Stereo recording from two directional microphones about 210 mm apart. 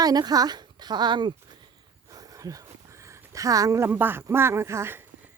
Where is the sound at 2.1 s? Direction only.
15° right (ahead or behind).